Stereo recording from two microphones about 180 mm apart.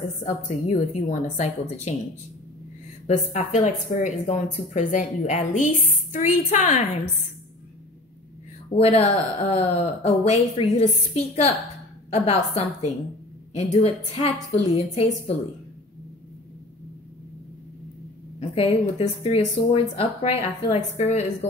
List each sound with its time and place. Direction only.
0.2 s speech: 40° left (ahead or behind)
3.1 s a woman's voice: 40° left (ahead or behind)
8.6 s speech: 35° left (ahead or behind)
18.5 s speech: 35° left (ahead or behind)